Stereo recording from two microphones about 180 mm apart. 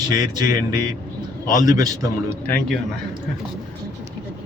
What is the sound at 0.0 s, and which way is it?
Speech, 20° right (ahead or behind).